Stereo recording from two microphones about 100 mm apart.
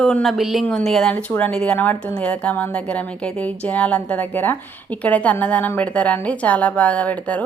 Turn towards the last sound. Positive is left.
turn(degrees=15)  # may be behind; listen again after turning